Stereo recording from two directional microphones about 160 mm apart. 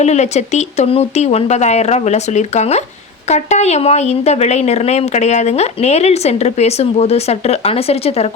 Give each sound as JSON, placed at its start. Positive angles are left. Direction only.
{"t": 0.0, "sound": "speech", "side_deg": 45}